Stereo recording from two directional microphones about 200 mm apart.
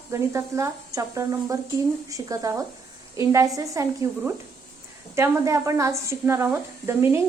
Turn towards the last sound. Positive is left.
turn(degrees=-10)  # may be behind; listen again after turning